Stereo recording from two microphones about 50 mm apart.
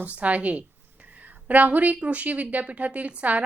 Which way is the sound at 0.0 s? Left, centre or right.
Right.